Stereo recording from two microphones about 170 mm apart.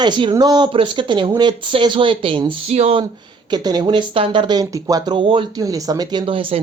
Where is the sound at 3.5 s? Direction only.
25° right (ahead or behind).